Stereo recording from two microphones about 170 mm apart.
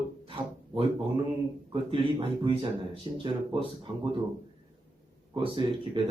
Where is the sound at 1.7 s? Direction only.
30° right (ahead or behind).